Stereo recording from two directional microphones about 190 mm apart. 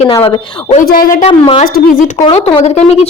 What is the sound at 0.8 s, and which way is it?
Speech, 50° left (ahead or behind).